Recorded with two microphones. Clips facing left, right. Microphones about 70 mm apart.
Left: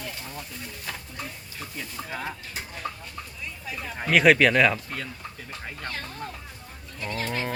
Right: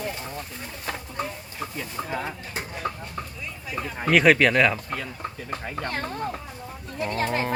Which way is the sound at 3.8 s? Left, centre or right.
Centre.